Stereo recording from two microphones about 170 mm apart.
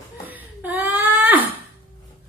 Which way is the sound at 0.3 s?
10° right (ahead or behind).